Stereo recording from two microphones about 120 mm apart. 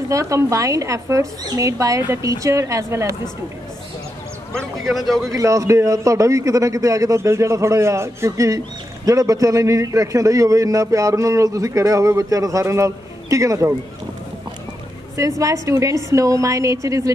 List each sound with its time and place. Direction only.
0.1 s a man's voice: 25° right (ahead or behind)
4.8 s a man's voice: centre (ahead or behind)
5.3 s a man's voice: 25° right (ahead or behind)
15.1 s a man's voice: 25° right (ahead or behind)